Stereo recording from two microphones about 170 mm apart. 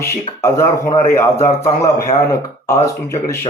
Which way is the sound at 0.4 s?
15° left (ahead or behind).